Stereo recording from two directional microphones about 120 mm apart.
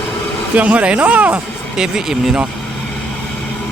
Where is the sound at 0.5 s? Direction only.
10° right (ahead or behind).